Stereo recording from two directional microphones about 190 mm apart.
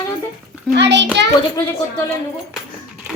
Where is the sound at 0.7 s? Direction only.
65° right (ahead or behind).